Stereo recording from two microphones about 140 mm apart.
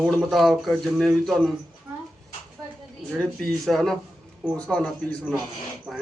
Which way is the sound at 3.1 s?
Centre (ahead or behind).